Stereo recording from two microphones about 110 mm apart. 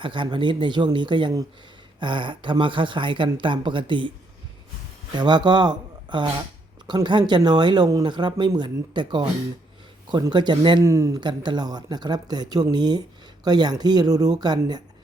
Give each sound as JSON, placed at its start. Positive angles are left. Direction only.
{"t": 0.0, "sound": "speech", "side_deg": -50}
{"t": 5.1, "sound": "speech", "side_deg": -40}
{"t": 10.8, "sound": "speech", "side_deg": -30}
{"t": 11.2, "sound": "speech", "side_deg": -45}